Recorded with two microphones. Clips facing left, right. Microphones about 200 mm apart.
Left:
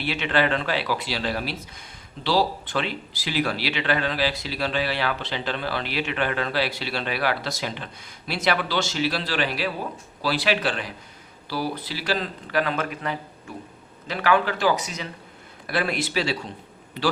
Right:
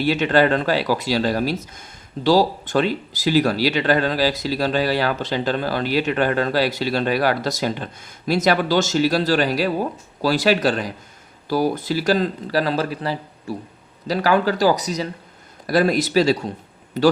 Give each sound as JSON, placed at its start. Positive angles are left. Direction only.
{"t": 0.0, "sound": "speech", "side_deg": -40}